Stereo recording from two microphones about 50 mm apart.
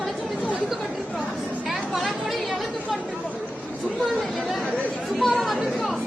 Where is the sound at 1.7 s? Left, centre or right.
Centre.